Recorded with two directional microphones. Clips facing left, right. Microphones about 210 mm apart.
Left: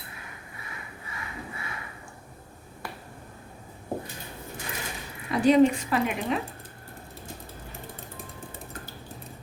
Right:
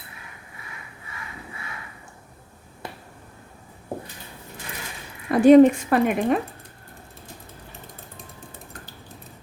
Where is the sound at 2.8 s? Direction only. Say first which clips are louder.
Right 2 dB; 20° right (ahead or behind).